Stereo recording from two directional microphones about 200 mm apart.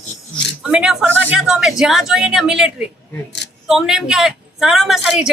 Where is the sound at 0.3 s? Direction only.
5° right (ahead or behind).